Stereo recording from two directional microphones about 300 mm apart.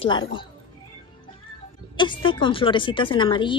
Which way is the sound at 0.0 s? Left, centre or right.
Centre.